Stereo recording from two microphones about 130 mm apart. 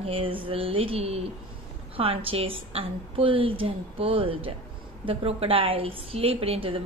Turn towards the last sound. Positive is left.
turn(degrees=-45)  # may be behind; listen again after turning